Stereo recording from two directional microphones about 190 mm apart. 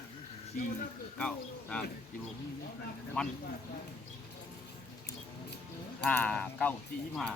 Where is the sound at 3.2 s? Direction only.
5° left (ahead or behind).